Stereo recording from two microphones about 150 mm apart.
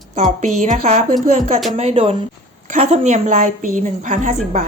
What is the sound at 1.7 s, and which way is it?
A woman's voice, 40° right (ahead or behind).